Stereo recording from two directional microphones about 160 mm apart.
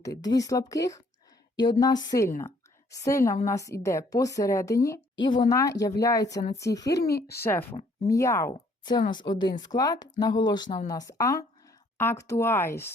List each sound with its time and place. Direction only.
0.0 s a woman's voice: 25° left (ahead or behind)
7.1 s speech: 80° left
8.1 s a woman's voice: 20° left (ahead or behind)